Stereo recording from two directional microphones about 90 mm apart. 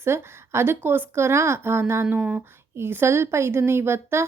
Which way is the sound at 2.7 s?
25° right (ahead or behind).